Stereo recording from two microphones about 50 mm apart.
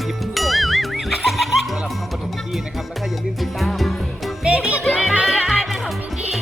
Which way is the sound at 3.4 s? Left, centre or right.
Centre.